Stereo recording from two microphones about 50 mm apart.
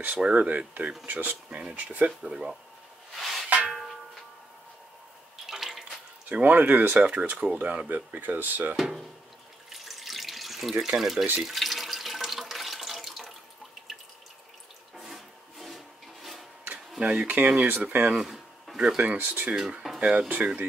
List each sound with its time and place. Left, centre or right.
0.0 s speech: right
3.2 s a sound: centre
3.4 s a sound: right
5.5 s water: centre
6.2 s speech: right
9.7 s water: centre
11.0 s speech: centre
11.3 s water: centre
15.0 s rub: centre
17.0 s speech: right
18.1 s a sound: centre
18.9 s speech: right